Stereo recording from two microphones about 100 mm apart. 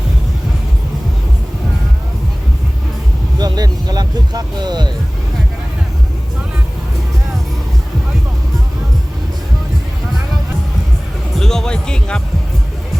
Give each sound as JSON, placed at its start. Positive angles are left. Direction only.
{"t": 3.3, "sound": "vehicle", "side_deg": -40}
{"t": 11.3, "sound": "music", "side_deg": 5}